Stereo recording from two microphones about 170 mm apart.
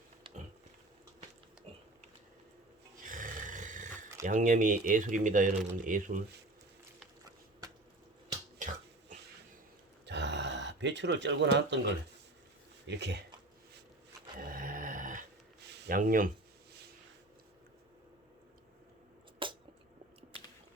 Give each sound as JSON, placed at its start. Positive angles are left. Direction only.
{"t": 3.1, "sound": "speech", "side_deg": -50}
{"t": 8.5, "sound": "finger snapping", "side_deg": -50}
{"t": 10.1, "sound": "a sound", "side_deg": -90}
{"t": 12.9, "sound": "speech", "side_deg": -90}
{"t": 14.3, "sound": "dog", "side_deg": -55}
{"t": 15.6, "sound": "a sound", "side_deg": -85}
{"t": 15.9, "sound": "speech", "side_deg": -55}
{"t": 19.4, "sound": "squish", "side_deg": -30}